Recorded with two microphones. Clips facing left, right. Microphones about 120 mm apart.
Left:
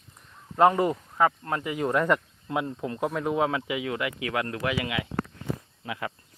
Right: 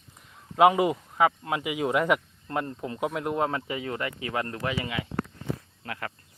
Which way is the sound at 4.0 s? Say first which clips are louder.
Left 2 dB; 40° right (ahead or behind).